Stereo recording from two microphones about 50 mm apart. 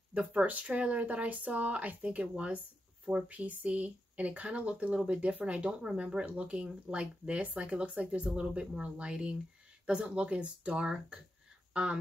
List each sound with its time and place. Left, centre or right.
0.1 s speech: right